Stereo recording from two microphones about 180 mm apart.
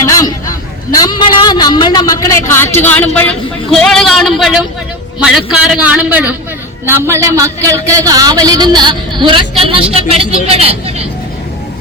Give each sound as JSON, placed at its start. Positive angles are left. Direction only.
{"t": 0.0, "sound": "hubbub", "side_deg": 20}
{"t": 0.9, "sound": "a man's voice", "side_deg": 20}